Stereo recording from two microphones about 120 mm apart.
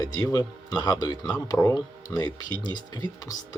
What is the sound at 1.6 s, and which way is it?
Speech, 20° left (ahead or behind).